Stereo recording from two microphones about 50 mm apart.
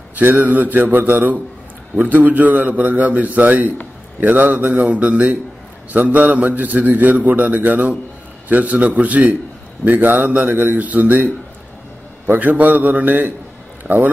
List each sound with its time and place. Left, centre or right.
0.1 s speech: right
12.4 s speech: right